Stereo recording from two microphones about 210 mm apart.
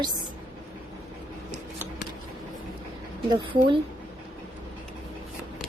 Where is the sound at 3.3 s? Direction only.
25° right (ahead or behind).